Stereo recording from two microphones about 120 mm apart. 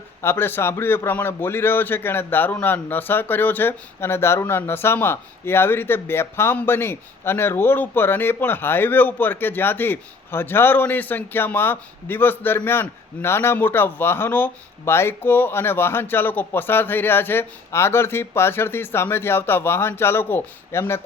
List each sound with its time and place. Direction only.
0.2 s a man's voice: 20° left (ahead or behind)